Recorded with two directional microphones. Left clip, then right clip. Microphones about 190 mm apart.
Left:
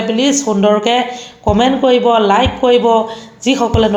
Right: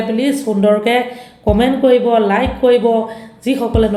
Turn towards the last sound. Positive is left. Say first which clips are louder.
# left 2 dB
turn(degrees=15)  # may be behind; listen again after turning